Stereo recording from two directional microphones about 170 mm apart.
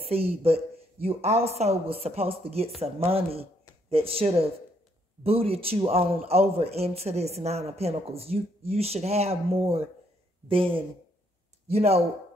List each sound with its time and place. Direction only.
0.1 s a man's voice: 35° right (ahead or behind)